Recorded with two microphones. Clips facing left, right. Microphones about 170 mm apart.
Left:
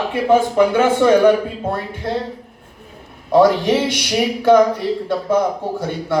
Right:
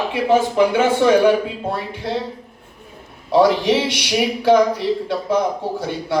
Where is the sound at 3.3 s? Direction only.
50° left (ahead or behind).